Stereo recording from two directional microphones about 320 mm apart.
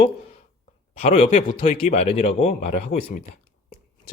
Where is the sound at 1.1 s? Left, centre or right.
Centre.